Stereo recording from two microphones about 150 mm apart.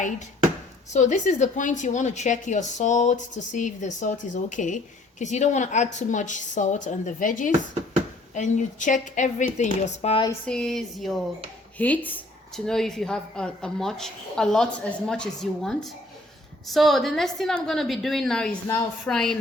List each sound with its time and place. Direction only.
0.9 s a woman's voice: 50° left (ahead or behind)
10.4 s a woman's voice: 5° left (ahead or behind)